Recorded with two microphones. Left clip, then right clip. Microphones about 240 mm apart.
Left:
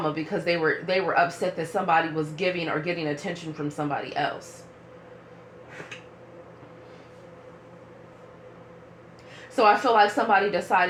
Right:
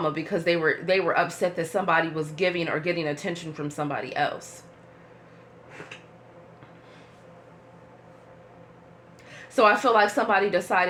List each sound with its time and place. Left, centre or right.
0.0 s speech: right
9.6 s speech: right